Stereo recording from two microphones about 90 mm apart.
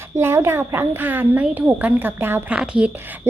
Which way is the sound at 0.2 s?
25° right (ahead or behind).